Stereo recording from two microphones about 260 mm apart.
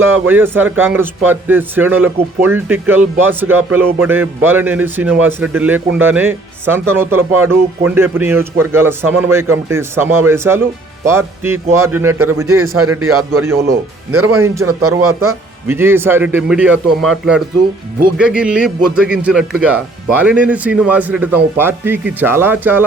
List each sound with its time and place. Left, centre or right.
0.1 s speech: centre
13.3 s speech: centre
14.7 s speech: right
15.0 s speech: centre